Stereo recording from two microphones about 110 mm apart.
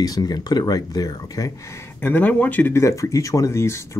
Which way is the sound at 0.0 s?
35° left (ahead or behind).